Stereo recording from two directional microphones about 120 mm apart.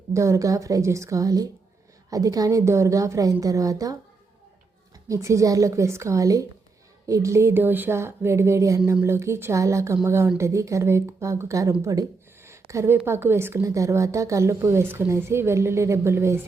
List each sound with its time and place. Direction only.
0.1 s a woman's voice: 25° right (ahead or behind)
5.0 s a woman's voice: 25° right (ahead or behind)